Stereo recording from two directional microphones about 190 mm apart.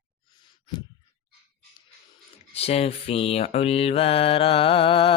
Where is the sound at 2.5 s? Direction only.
30° left (ahead or behind).